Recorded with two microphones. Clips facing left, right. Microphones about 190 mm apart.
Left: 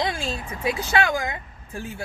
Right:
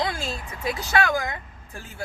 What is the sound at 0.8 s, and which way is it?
Speech, 20° left (ahead or behind).